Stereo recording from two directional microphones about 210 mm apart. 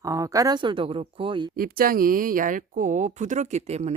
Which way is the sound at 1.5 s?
45° right (ahead or behind).